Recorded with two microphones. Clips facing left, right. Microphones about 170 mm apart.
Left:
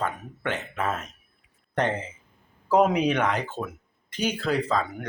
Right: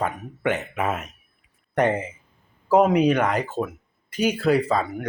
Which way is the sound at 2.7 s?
Centre (ahead or behind).